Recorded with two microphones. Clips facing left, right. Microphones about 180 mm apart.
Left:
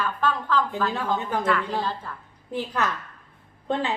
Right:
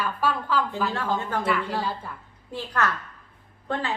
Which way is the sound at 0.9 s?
15° left (ahead or behind).